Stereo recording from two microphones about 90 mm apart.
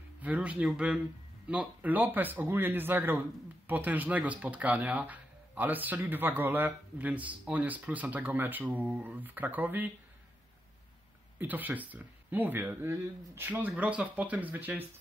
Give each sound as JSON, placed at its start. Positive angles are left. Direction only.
{"t": 0.2, "sound": "speech", "side_deg": -15}
{"t": 11.3, "sound": "speech", "side_deg": -20}